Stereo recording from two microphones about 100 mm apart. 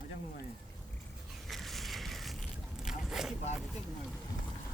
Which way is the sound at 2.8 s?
5° right (ahead or behind).